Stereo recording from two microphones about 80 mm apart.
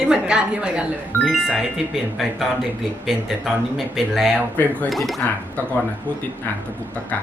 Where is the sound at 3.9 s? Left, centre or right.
Centre.